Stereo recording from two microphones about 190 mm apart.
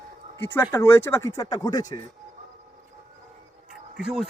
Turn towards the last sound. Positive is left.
turn(degrees=0)  # may be behind; listen again after turning